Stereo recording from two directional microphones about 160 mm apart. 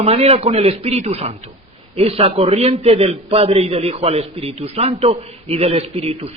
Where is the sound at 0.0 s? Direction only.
40° right (ahead or behind).